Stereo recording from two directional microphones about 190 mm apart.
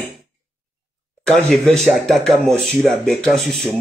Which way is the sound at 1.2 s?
Centre (ahead or behind).